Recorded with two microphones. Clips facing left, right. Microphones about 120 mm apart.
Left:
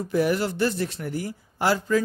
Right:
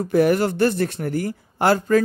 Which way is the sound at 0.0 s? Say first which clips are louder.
Right 6 dB; 60° right (ahead or behind).